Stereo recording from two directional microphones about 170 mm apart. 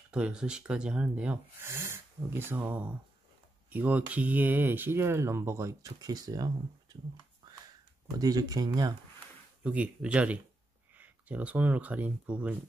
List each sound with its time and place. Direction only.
0.1 s speech: 5° right (ahead or behind); by 7.0 s 25° right (ahead or behind)
8.2 s speech: 20° right (ahead or behind)
9.6 s speech: 5° right (ahead or behind)